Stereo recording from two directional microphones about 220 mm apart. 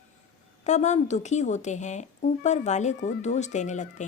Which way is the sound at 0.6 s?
30° left (ahead or behind).